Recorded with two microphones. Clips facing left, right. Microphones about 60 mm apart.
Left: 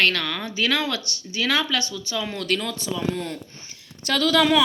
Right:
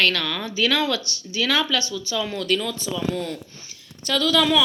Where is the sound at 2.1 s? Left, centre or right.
Left.